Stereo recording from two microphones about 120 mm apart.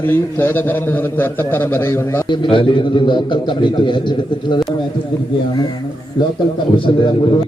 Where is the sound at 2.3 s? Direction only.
45° left (ahead or behind).